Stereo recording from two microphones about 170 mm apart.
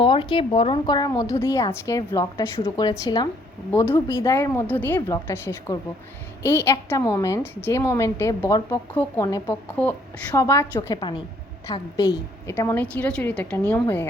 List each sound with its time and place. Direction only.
0.0 s a woman's voice: 30° left (ahead or behind)
9.8 s a woman's voice: 10° left (ahead or behind)